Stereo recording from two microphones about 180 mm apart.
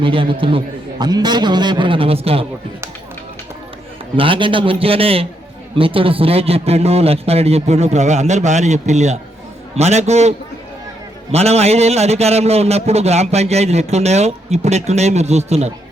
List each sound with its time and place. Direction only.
0.0 s a man's voice: 30° right (ahead or behind)
4.2 s a man's voice: 30° right (ahead or behind)